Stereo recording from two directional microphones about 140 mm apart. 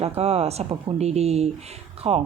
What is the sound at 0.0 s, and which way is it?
Speech, 45° right (ahead or behind).